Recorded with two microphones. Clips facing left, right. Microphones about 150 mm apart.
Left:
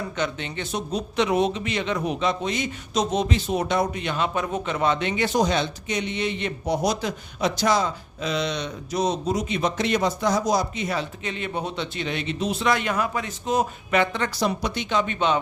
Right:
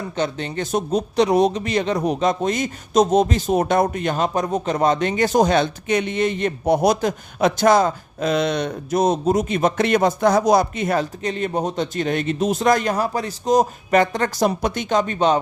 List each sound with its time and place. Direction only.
0.2 s speech: 40° right (ahead or behind)